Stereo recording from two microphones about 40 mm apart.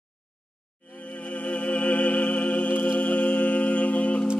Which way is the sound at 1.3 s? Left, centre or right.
Left.